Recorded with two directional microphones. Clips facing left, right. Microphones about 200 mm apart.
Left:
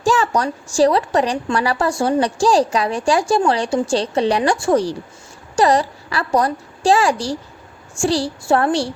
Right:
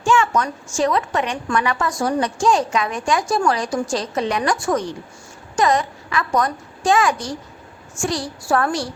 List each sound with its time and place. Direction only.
0.0 s a woman's voice: 35° left (ahead or behind)